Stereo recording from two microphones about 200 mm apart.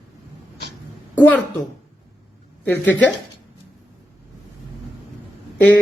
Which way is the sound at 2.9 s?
10° left (ahead or behind).